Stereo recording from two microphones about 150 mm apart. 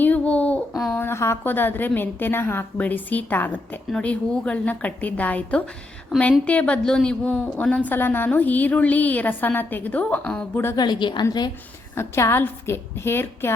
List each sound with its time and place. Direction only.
0.0 s a sound: 10° left (ahead or behind)
0.9 s a woman's voice: 15° left (ahead or behind)
10.8 s a woman's voice: 30° left (ahead or behind)
11.9 s a woman's voice: 15° left (ahead or behind)